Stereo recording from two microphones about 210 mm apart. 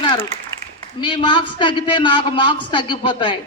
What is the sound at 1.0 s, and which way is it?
A man's voice, 25° left (ahead or behind).